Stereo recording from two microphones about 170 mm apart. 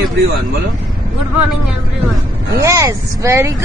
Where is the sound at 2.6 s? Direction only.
20° right (ahead or behind).